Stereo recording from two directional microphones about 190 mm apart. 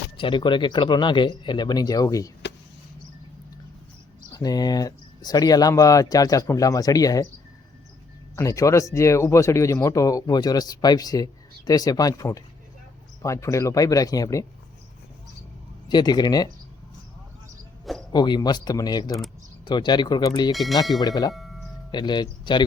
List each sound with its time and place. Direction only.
0.2 s speech: 25° left (ahead or behind)
4.3 s speech: 20° left (ahead or behind)
8.4 s speech: 15° left (ahead or behind)
15.9 s speech: 20° left (ahead or behind)
18.1 s speech: 20° left (ahead or behind)
20.5 s speech: centre (ahead or behind)
21.0 s speech: 20° left (ahead or behind)
21.3 s music: centre (ahead or behind)
21.9 s speech: 25° left (ahead or behind)